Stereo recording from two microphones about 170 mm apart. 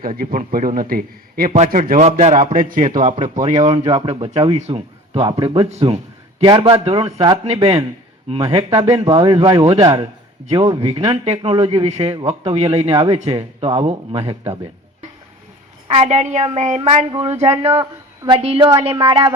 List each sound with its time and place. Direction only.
0.0 s a man's voice: 55° right (ahead or behind)
1.5 s a man's voice: 45° right (ahead or behind)
3.7 s speech: 30° right (ahead or behind)
9.8 s speech: 20° right (ahead or behind)
10.7 s speech: 30° right (ahead or behind)
15.9 s a man's voice: 40° right (ahead or behind)